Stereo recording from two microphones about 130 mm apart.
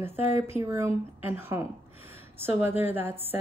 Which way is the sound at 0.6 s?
20° right (ahead or behind).